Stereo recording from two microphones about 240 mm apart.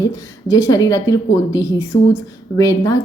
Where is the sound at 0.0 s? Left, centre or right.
Centre.